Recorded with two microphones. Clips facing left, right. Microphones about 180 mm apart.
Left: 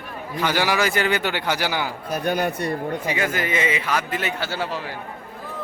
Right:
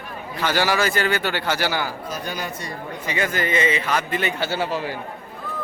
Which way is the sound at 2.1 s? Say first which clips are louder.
Left 6 dB; 55° left (ahead or behind).